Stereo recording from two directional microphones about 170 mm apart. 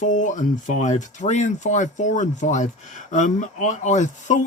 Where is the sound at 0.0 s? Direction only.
45° left (ahead or behind).